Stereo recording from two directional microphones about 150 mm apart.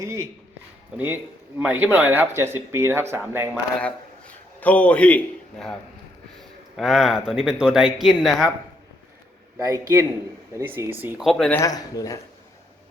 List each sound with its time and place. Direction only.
0.0 s a man's voice: 20° right (ahead or behind)
3.5 s a man's voice: 10° left (ahead or behind)
6.7 s speech: centre (ahead or behind)
9.6 s a man's voice: 25° right (ahead or behind)
11.2 s speech: centre (ahead or behind)
11.5 s speech: 25° left (ahead or behind)